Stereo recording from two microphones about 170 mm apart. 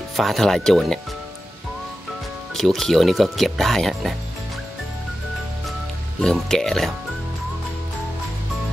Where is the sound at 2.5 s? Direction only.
Centre (ahead or behind).